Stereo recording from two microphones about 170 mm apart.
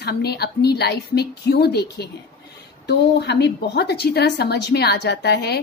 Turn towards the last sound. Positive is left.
turn(degrees=70)  # may be behind; listen again after turning